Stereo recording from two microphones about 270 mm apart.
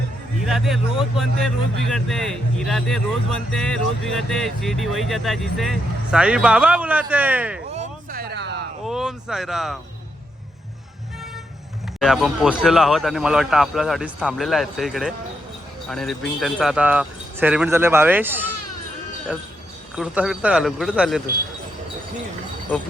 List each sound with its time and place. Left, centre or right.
0.4 s speech: centre
7.7 s a sound: right
8.8 s speech: centre
11.9 s speech: centre